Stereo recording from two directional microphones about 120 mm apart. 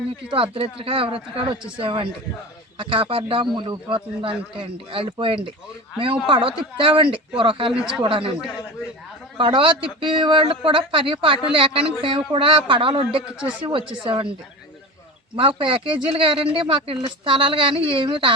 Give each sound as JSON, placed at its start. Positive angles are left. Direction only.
{"t": 0.3, "sound": "speech", "side_deg": -50}
{"t": 9.4, "sound": "speech", "side_deg": -45}
{"t": 15.4, "sound": "speech", "side_deg": -45}